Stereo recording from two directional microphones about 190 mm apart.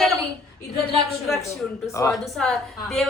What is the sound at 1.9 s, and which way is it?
Speech, 15° left (ahead or behind).